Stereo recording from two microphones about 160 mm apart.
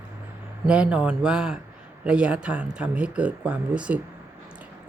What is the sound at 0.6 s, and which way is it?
Speech, 5° right (ahead or behind).